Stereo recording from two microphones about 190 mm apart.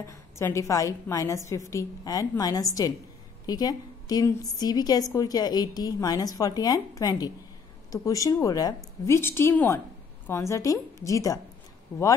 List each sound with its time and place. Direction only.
0.0 s a woman's voice: 15° left (ahead or behind)